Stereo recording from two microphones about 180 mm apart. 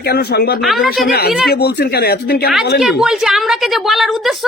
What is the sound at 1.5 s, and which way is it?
A man's voice, 65° left (ahead or behind).